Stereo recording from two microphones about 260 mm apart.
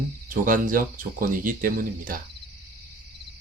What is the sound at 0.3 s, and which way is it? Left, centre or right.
Speech, right.